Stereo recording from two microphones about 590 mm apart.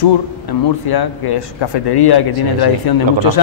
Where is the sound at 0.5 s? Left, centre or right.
Left.